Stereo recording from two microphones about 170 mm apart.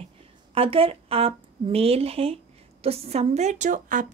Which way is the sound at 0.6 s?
35° right (ahead or behind).